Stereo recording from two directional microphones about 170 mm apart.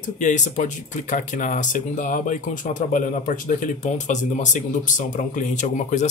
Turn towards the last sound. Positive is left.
turn(degrees=45)  # may be behind; listen again after turning